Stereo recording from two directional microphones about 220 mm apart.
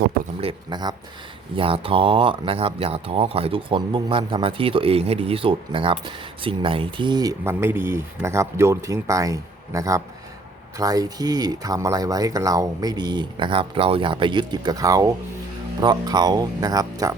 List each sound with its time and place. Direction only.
0.4 s speech: 20° right (ahead or behind)